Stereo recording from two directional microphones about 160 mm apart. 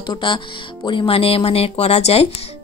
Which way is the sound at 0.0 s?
30° left (ahead or behind).